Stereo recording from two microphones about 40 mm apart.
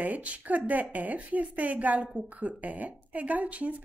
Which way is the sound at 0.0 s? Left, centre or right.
Right.